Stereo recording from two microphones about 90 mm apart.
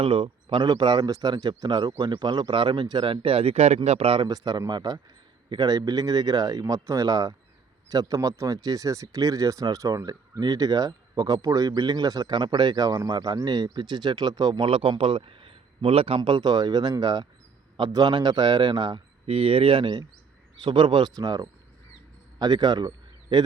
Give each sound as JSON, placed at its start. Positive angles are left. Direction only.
{"t": 0.0, "sound": "speech", "side_deg": -75}
{"t": 0.7, "sound": "a man's voice", "side_deg": -55}
{"t": 4.3, "sound": "a man's voice", "side_deg": -50}
{"t": 14.7, "sound": "a man's voice", "side_deg": -85}
{"t": 21.2, "sound": "a man's voice", "side_deg": -50}